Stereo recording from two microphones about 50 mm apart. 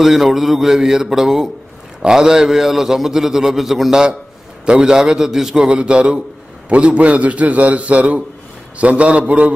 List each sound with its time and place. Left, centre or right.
0.0 s a man's voice: centre; by 9.5 s right